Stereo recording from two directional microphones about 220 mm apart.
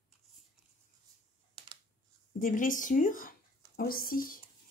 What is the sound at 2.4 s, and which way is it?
Speech, 35° left (ahead or behind).